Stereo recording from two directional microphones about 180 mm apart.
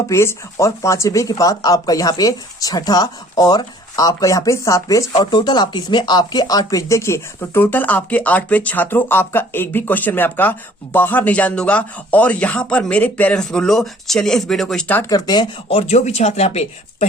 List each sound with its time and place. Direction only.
0.1 s speech: 15° left (ahead or behind)
15.1 s speech: 25° left (ahead or behind)